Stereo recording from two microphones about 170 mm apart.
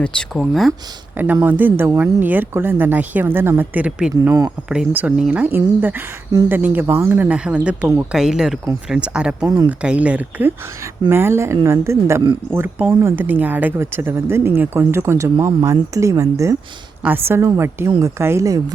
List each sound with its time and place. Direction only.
0.0 s speech: 5° left (ahead or behind)
1.1 s speech: 10° right (ahead or behind)
4.1 s speech: 20° right (ahead or behind)
4.7 s speech: 5° right (ahead or behind)